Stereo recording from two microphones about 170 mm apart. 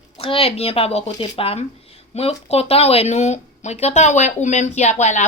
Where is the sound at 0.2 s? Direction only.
35° left (ahead or behind).